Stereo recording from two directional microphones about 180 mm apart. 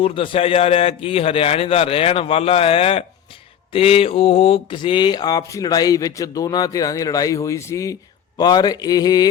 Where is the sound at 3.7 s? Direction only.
30° left (ahead or behind).